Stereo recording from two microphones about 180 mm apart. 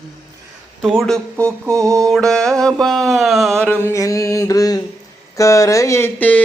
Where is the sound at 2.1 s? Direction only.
5° left (ahead or behind).